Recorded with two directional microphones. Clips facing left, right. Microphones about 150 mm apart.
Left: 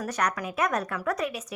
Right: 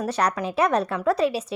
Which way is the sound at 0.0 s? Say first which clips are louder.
Right 5 dB; 30° right (ahead or behind).